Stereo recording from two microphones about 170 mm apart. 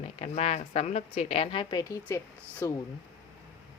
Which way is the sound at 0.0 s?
40° left (ahead or behind).